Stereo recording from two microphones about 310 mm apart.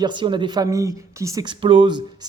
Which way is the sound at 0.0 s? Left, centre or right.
Centre.